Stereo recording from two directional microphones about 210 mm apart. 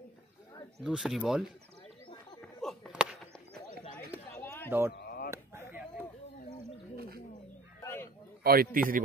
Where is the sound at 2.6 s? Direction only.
Centre (ahead or behind).